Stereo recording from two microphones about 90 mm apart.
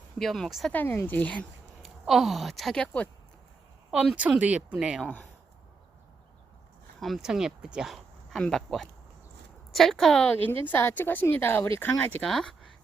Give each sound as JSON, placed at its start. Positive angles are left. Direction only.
{"t": 0.2, "sound": "a woman's voice", "side_deg": 5}
{"t": 0.7, "sound": "speech", "side_deg": 20}
{"t": 1.8, "sound": "speech", "side_deg": 0}
{"t": 3.9, "sound": "speech", "side_deg": -10}
{"t": 7.0, "sound": "a woman's voice", "side_deg": 0}
{"t": 10.2, "sound": "speech", "side_deg": 20}
{"t": 12.2, "sound": "speech", "side_deg": 5}